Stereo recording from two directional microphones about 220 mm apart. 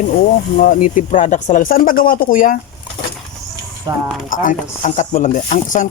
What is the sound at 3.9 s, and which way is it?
Speech, 15° right (ahead or behind).